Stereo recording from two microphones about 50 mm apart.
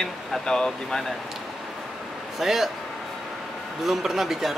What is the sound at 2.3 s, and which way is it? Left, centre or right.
Speech, centre.